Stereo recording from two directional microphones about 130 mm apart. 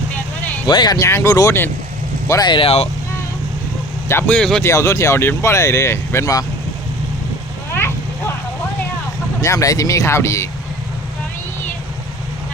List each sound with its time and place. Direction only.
0.7 s speech: 35° left (ahead or behind)
0.9 s speech: 20° left (ahead or behind)
2.5 s speech: 45° left (ahead or behind)
4.1 s speech: 15° left (ahead or behind)
4.6 s speech: 20° left (ahead or behind)
7.7 s vehicle: 15° left (ahead or behind)
9.4 s speech: 25° left (ahead or behind)